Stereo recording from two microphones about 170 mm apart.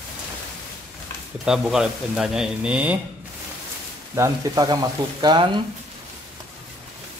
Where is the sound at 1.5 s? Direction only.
5° right (ahead or behind).